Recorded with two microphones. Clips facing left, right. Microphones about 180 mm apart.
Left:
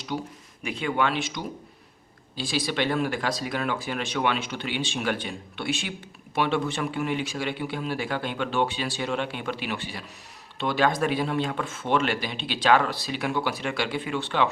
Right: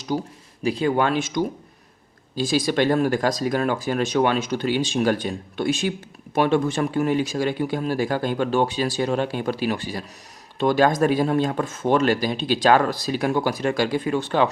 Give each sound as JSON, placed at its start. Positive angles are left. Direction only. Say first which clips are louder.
{"t": 0.1, "sound": "speech", "louder": "right 6 dB", "side_deg": -40}